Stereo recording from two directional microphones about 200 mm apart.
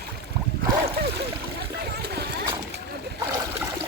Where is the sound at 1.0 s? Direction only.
55° right (ahead or behind).